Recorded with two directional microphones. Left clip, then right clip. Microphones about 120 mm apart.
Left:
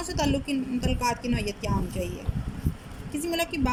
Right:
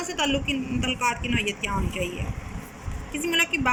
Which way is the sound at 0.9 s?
35° left (ahead or behind).